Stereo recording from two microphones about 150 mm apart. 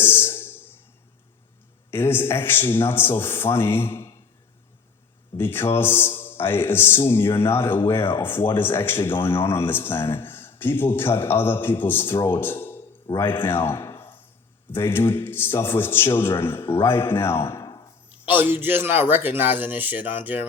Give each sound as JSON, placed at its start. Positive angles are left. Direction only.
{"t": 0.0, "sound": "a sound", "side_deg": 15}
{"t": 1.9, "sound": "a man's voice", "side_deg": 15}
{"t": 5.4, "sound": "a man's voice", "side_deg": 15}
{"t": 18.3, "sound": "a man's voice", "side_deg": -10}